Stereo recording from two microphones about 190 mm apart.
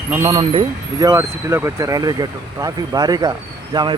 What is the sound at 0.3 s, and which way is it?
Speech, 25° right (ahead or behind).